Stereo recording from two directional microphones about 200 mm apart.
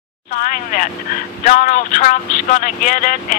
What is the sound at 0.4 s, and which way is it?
Speech, 40° left (ahead or behind).